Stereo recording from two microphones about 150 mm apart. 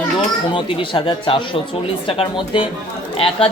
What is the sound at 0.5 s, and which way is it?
Speech, 35° left (ahead or behind).